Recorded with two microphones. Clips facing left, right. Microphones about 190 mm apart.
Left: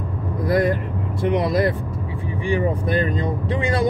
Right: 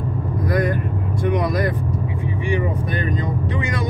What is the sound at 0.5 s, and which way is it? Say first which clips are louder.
Vehicle: left 3 dB; 25° left (ahead or behind).